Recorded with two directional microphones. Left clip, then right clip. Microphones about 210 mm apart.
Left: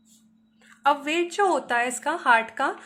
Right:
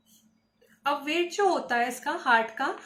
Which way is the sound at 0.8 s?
55° left (ahead or behind).